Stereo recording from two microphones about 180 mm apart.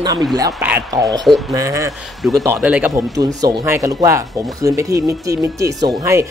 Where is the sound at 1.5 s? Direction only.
15° right (ahead or behind).